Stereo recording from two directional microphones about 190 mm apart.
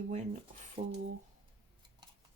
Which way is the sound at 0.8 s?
40° right (ahead or behind).